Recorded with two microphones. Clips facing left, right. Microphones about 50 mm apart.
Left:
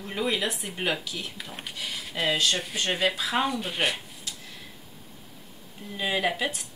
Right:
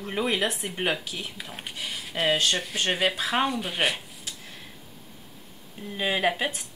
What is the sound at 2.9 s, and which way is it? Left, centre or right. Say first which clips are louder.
Speech: right 1 dB; centre.